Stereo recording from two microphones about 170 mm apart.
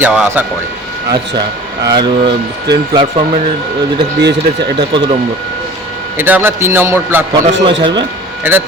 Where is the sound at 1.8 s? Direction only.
25° right (ahead or behind).